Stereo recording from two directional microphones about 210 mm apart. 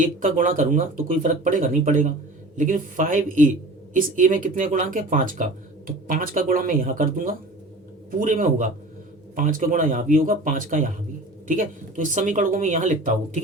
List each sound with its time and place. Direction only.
0.0 s speech: 40° right (ahead or behind)